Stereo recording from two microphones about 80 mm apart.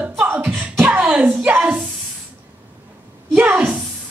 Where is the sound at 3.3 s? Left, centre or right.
Right.